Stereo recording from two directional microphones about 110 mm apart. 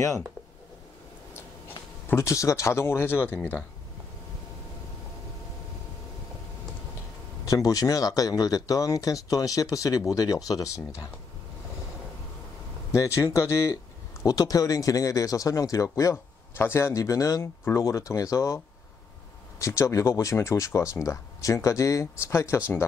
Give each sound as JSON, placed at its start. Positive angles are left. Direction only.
{"t": 2.0, "sound": "speech", "side_deg": 25}
{"t": 7.4, "sound": "speech", "side_deg": 30}
{"t": 12.9, "sound": "speech", "side_deg": 30}
{"t": 19.6, "sound": "speech", "side_deg": 30}